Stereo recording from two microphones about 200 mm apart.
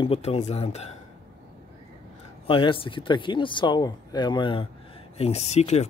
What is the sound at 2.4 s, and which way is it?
Speech, 25° left (ahead or behind).